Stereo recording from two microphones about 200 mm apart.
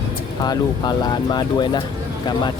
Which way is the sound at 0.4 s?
20° left (ahead or behind).